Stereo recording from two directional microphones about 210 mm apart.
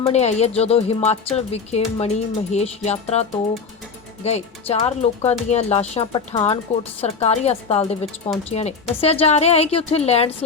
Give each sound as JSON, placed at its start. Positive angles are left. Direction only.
{"t": 0.0, "sound": "a woman's voice", "side_deg": 30}